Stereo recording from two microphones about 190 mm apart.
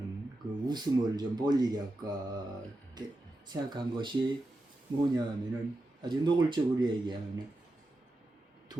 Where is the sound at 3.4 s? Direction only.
25° right (ahead or behind).